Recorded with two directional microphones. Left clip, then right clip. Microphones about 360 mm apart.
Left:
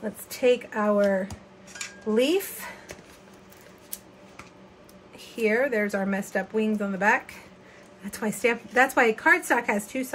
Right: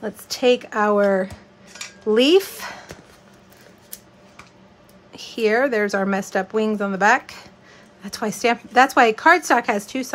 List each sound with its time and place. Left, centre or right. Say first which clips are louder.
0.0 s speech: right 4 dB; centre
5.4 s speech: right 5 dB; centre